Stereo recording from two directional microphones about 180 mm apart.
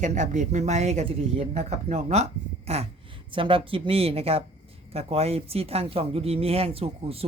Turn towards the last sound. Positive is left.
turn(degrees=-35)  # may be behind; listen again after turning